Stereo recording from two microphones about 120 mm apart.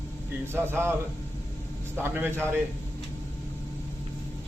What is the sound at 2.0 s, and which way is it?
Speech, 15° right (ahead or behind).